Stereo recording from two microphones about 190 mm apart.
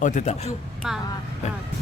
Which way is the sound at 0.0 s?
40° left (ahead or behind).